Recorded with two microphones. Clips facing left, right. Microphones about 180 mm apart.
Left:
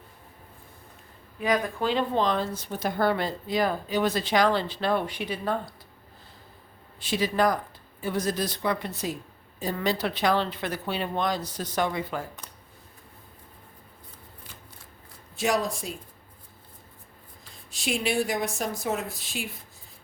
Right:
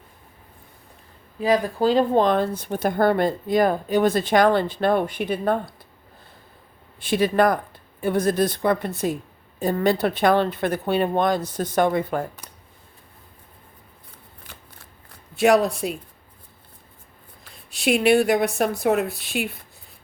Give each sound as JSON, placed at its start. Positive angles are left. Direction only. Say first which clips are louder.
{"t": 1.4, "sound": "speech", "louder": "right 6 dB", "side_deg": -30}
{"t": 7.0, "sound": "speech", "louder": "right 5 dB", "side_deg": -55}
{"t": 15.4, "sound": "speech", "louder": "right 9 dB", "side_deg": -65}
{"t": 17.4, "sound": "speech", "louder": "right 9 dB", "side_deg": -65}